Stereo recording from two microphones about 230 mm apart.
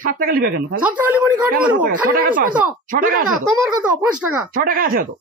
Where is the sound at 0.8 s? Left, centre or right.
Centre.